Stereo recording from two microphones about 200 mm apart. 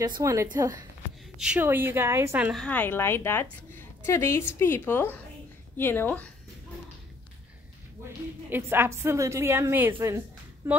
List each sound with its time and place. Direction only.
0.2 s a woman's voice: 15° right (ahead or behind)
1.4 s a woman's voice: 5° right (ahead or behind)
2.6 s a woman's voice: 10° left (ahead or behind)
8.5 s a woman's voice: 10° right (ahead or behind)